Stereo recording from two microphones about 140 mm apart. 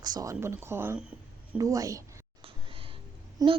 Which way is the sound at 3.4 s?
25° right (ahead or behind).